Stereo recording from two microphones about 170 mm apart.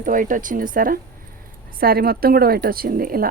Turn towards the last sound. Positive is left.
turn(degrees=-60)  # may be behind; listen again after turning